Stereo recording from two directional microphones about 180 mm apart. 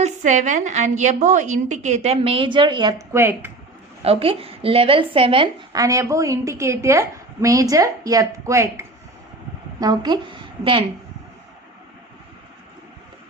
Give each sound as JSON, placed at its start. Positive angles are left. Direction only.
{"t": 0.0, "sound": "a woman's voice", "side_deg": -40}
{"t": 3.1, "sound": "speech", "side_deg": -15}
{"t": 4.0, "sound": "a woman's voice", "side_deg": -30}